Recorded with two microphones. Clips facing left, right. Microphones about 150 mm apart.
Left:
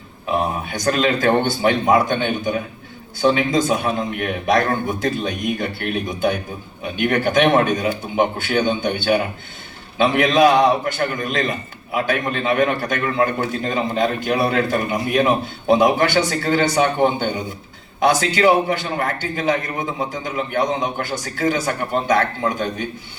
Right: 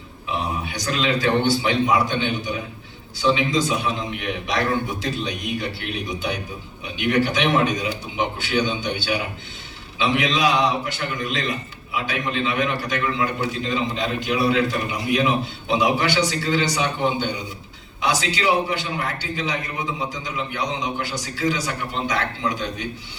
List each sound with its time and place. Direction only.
0.3 s a man's voice: 50° left (ahead or behind)